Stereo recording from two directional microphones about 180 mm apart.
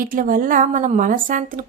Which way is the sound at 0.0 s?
50° right (ahead or behind).